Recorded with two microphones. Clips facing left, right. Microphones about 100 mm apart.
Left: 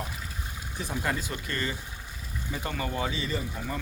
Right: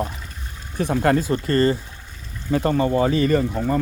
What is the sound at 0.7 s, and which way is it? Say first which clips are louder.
Speech: right 13 dB; 60° right (ahead or behind).